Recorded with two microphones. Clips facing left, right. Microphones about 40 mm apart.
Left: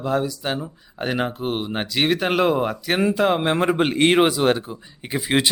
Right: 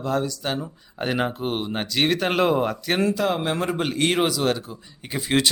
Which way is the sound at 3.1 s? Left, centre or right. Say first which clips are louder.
Left 4 dB; left.